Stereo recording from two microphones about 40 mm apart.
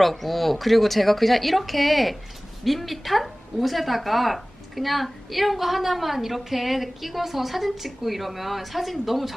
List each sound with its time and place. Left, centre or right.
0.0 s a woman's voice: centre